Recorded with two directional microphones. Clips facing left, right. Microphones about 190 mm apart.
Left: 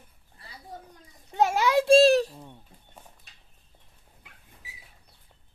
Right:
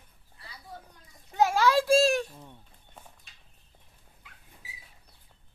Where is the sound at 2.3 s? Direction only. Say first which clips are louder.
Left 3 dB; 10° left (ahead or behind).